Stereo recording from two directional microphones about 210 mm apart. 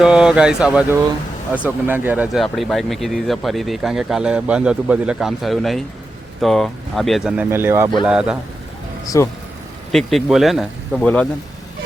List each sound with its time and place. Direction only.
0.0 s speech: 5° right (ahead or behind)
9.0 s speech: 15° left (ahead or behind)
9.9 s speech: centre (ahead or behind)